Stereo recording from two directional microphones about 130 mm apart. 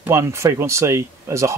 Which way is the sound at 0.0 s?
20° right (ahead or behind).